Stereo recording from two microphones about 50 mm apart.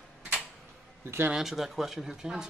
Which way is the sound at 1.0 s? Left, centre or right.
Right.